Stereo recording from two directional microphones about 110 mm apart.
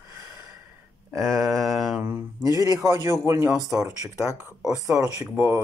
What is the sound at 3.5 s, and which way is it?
Speech, 5° right (ahead or behind).